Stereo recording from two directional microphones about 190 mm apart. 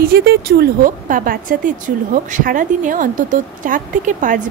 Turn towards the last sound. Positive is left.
turn(degrees=-40)  # may be behind; listen again after turning